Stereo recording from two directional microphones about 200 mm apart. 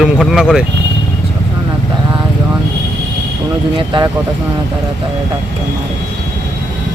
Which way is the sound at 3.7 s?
25° right (ahead or behind).